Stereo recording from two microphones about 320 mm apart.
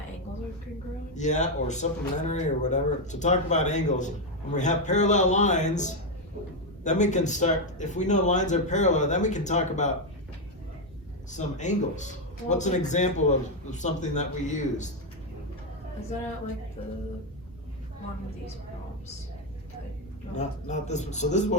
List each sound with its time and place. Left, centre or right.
1.1 s speech: left
11.3 s speech: left
20.3 s speech: left